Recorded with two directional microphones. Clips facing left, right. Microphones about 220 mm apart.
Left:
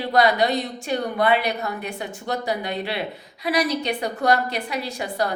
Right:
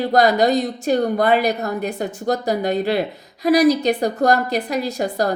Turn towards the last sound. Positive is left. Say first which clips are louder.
# right 5 dB
turn(degrees=-40)  # may be behind; listen again after turning